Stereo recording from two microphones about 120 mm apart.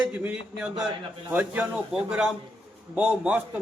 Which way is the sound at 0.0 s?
10° right (ahead or behind).